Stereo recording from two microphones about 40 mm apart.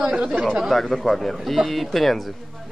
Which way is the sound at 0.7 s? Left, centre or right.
Centre.